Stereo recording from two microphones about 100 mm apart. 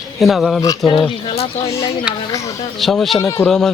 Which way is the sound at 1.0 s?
85° left.